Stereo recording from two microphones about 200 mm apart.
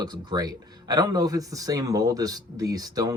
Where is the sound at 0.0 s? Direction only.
20° right (ahead or behind).